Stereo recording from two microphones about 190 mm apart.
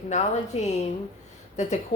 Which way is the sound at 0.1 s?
35° left (ahead or behind).